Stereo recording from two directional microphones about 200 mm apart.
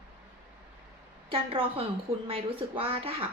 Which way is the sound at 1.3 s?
25° right (ahead or behind).